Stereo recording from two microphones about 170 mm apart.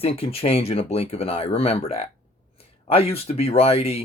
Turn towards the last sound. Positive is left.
turn(degrees=35)  # may be behind; listen again after turning